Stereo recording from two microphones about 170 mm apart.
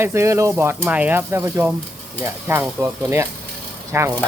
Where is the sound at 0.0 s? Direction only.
15° right (ahead or behind).